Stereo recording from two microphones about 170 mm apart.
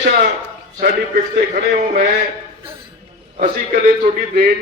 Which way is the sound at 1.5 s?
45° right (ahead or behind).